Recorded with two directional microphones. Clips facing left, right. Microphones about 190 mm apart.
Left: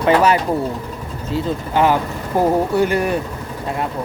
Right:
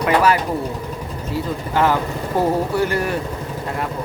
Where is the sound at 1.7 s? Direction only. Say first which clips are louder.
Left 2 dB; 20° left (ahead or behind).